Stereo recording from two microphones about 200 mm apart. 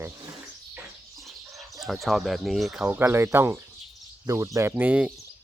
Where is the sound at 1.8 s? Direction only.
Centre (ahead or behind).